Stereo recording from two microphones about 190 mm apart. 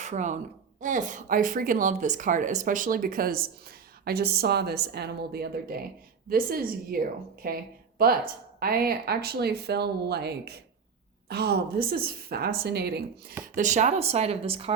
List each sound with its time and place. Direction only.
0.0 s a woman's voice: 40° right (ahead or behind); by 13.1 s 60° right (ahead or behind)
13.6 s speech: 40° right (ahead or behind)